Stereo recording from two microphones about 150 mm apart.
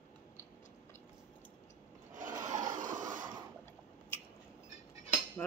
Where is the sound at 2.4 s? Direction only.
60° right (ahead or behind).